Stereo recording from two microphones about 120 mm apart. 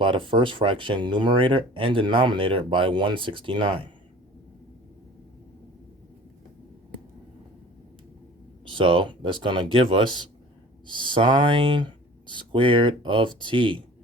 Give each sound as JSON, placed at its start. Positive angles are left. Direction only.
{"t": 0.0, "sound": "speech", "side_deg": -45}
{"t": 8.7, "sound": "speech", "side_deg": -45}